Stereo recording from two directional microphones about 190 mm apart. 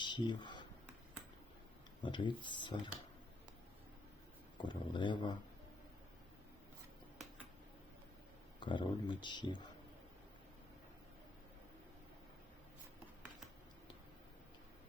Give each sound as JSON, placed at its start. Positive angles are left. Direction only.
{"t": 0.0, "sound": "a sound", "side_deg": 25}
{"t": 2.0, "sound": "speech", "side_deg": 25}
{"t": 4.5, "sound": "speech", "side_deg": 25}
{"t": 8.6, "sound": "speech", "side_deg": 25}